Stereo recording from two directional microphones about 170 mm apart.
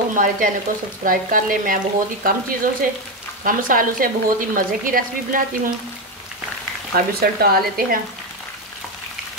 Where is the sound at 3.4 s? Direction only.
55° right (ahead or behind).